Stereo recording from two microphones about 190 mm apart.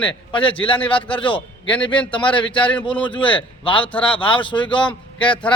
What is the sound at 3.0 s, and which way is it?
A man's voice, 25° left (ahead or behind).